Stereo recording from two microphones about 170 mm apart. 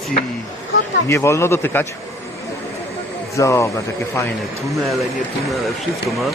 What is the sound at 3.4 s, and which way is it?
Speech, 15° left (ahead or behind).